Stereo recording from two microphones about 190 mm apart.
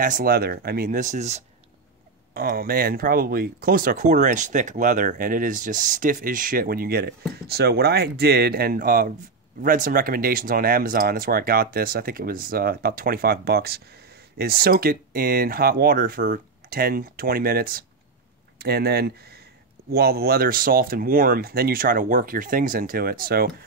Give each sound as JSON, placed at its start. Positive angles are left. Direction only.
{"t": 0.0, "sound": "speech", "side_deg": -50}
{"t": 2.3, "sound": "speech", "side_deg": -50}